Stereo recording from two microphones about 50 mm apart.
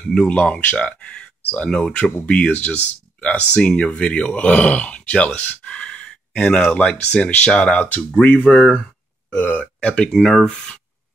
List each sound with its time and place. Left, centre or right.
0.0 s speech: centre
8.2 s speech: left
8.5 s speech: left
10.1 s speech: centre